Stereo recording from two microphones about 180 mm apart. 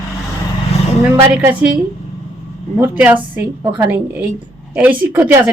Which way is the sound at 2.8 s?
10° right (ahead or behind).